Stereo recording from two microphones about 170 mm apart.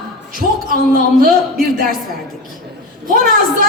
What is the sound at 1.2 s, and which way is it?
Speech, 55° right (ahead or behind).